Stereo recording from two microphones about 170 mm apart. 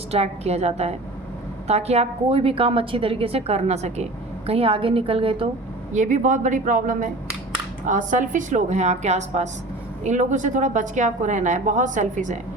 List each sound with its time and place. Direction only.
0.1 s a woman's voice: 40° right (ahead or behind)
5.9 s a woman's voice: 45° right (ahead or behind)